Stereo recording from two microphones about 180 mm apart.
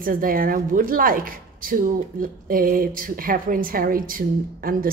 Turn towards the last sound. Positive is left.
turn(degrees=-50)  # may be behind; listen again after turning